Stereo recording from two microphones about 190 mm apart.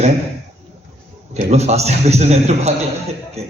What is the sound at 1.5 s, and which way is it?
A man's voice, 35° right (ahead or behind).